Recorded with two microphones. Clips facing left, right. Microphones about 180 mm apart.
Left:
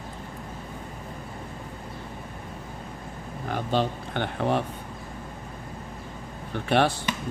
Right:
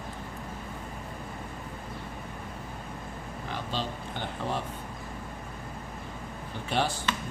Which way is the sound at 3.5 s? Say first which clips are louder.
Left 9 dB; 60° left (ahead or behind).